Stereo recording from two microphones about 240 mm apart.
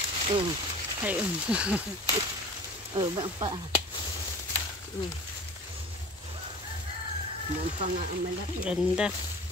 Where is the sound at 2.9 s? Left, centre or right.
Centre.